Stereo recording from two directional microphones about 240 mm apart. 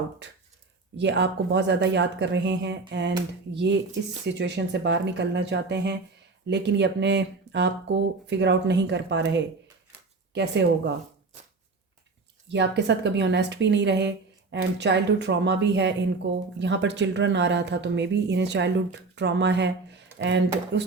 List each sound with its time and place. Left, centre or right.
0.2 s speech: right
4.3 s speech: right
12.5 s speech: right